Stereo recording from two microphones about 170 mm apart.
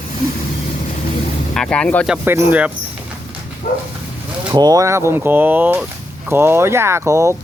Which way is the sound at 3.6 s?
50° left (ahead or behind).